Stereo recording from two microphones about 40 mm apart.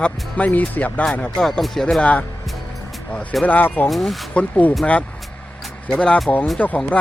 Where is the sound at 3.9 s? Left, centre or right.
Centre.